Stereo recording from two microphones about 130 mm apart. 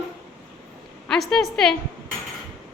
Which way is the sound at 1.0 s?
5° left (ahead or behind).